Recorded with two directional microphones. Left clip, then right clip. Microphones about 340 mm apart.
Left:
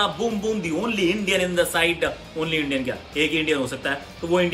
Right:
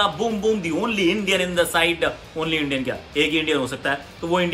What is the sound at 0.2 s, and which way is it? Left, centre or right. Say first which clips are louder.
Speech: right 3 dB; right.